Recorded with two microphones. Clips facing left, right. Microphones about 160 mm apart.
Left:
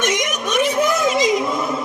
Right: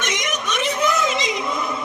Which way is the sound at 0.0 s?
50° left (ahead or behind).